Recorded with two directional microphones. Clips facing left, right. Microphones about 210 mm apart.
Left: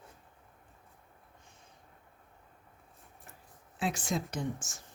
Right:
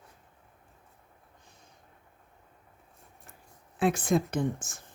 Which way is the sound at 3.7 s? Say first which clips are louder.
Right 8 dB; 55° right (ahead or behind).